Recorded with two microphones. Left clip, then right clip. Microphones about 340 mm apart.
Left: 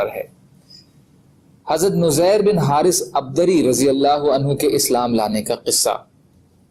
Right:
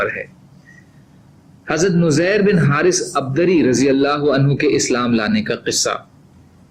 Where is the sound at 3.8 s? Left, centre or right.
Left.